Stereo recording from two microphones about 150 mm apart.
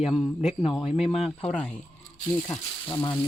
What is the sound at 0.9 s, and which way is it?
Speech, 40° left (ahead or behind).